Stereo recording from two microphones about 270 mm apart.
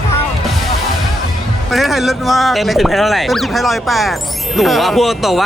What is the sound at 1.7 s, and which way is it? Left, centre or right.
Speech, centre.